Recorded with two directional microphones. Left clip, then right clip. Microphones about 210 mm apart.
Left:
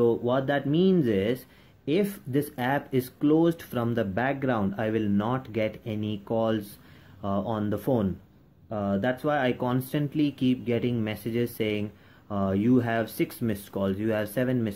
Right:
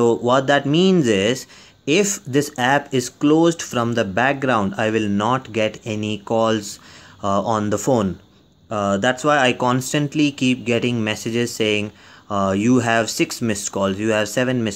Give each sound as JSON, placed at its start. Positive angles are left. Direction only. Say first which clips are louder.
{"t": 0.0, "sound": "speech", "louder": "right 8 dB", "side_deg": -25}